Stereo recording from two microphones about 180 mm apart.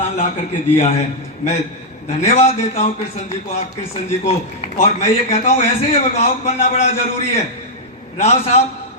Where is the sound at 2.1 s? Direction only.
40° left (ahead or behind).